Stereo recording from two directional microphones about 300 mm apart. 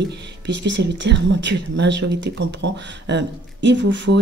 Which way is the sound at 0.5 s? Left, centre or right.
Right.